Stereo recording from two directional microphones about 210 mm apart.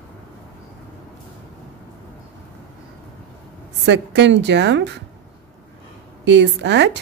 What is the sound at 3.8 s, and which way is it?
Speech, 55° right (ahead or behind).